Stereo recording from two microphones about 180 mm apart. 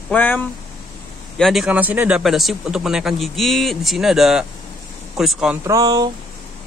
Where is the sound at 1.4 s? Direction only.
Centre (ahead or behind).